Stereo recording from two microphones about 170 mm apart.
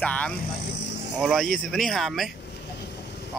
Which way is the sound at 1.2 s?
Centre (ahead or behind).